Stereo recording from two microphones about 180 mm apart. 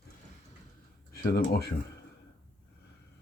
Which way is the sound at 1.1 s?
55° left (ahead or behind).